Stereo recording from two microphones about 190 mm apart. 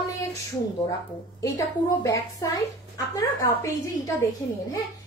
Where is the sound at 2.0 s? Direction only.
15° left (ahead or behind).